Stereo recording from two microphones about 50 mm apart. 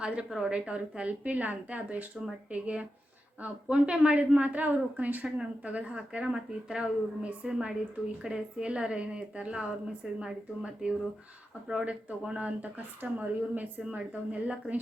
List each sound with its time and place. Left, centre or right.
0.3 s a woman's voice: centre
0.5 s a woman's voice: right
12.7 s speech: right